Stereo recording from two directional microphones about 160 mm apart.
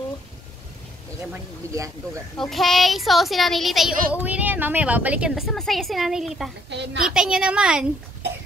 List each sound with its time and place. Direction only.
1.3 s speech: 20° right (ahead or behind)
2.3 s child singing: centre (ahead or behind)
6.7 s a woman's voice: 90° right
7.0 s child singing: 5° right (ahead or behind)